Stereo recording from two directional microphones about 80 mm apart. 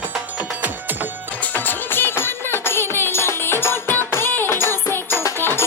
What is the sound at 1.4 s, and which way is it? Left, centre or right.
Music, left.